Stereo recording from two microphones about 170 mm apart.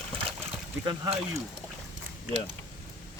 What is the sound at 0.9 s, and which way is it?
Speech, 25° right (ahead or behind).